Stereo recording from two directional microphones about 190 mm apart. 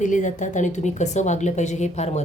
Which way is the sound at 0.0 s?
40° left (ahead or behind).